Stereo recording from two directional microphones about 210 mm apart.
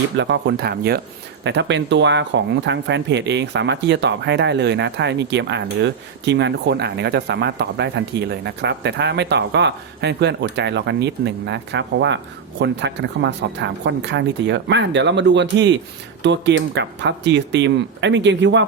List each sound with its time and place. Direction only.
0.2 s speech: 55° right (ahead or behind)